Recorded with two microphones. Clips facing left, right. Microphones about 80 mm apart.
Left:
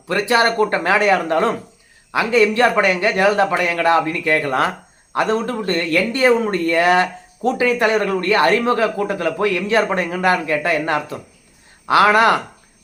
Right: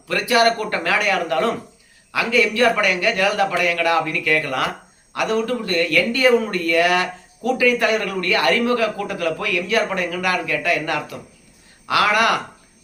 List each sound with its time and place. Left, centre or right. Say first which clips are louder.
0.1 s speech: left 1 dB; left